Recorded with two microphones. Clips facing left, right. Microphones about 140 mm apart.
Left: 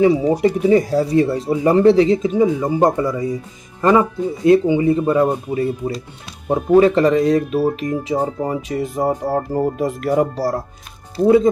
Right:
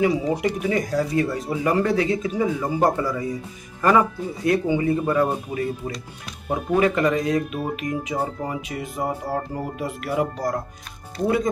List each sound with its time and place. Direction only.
0.0 s speech: 30° left (ahead or behind)